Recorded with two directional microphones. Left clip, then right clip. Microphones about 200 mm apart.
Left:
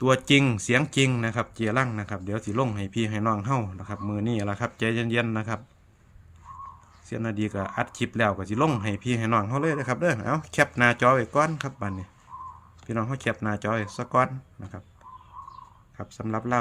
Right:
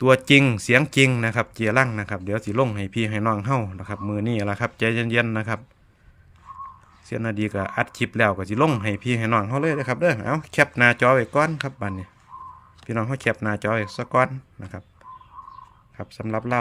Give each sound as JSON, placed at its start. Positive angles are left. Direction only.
{"t": 0.0, "sound": "speech", "side_deg": -25}
{"t": 7.1, "sound": "speech", "side_deg": -25}
{"t": 16.0, "sound": "speech", "side_deg": -25}